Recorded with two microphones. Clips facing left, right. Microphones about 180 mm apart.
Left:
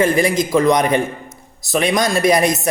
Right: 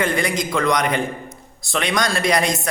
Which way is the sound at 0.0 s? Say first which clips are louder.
Left 6 dB; 25° left (ahead or behind).